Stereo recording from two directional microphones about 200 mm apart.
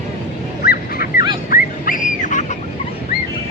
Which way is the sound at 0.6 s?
50° left (ahead or behind).